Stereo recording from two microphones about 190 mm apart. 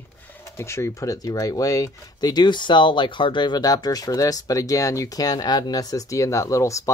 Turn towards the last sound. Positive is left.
turn(degrees=15)  # may be behind; listen again after turning